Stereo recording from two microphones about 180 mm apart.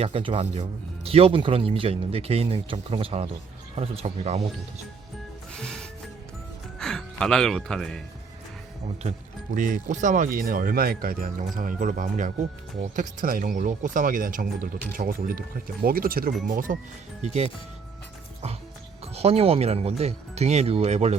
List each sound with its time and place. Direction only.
0.0 s speech: 30° right (ahead or behind)
5.5 s music: 5° left (ahead or behind)
6.7 s speech: 5° left (ahead or behind)
9.6 s speech: 50° right (ahead or behind)
17.2 s speech: 35° right (ahead or behind)
19.1 s speech: 35° right (ahead or behind)